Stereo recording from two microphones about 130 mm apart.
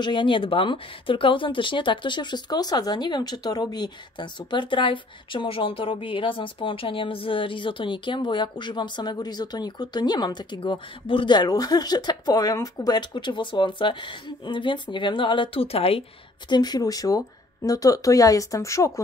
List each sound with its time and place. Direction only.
0.0 s speech: 35° left (ahead or behind)
16.4 s speech: 35° left (ahead or behind)